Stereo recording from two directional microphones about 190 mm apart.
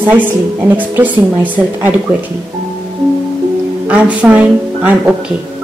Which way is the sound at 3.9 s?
5° right (ahead or behind).